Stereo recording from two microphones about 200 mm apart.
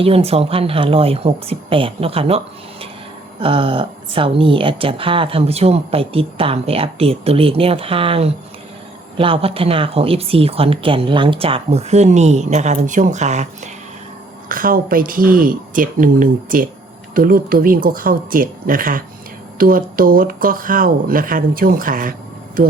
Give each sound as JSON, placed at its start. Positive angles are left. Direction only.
{"t": 0.0, "sound": "a woman's voice", "side_deg": -30}
{"t": 3.4, "sound": "a woman's voice", "side_deg": -25}
{"t": 14.5, "sound": "speech", "side_deg": -45}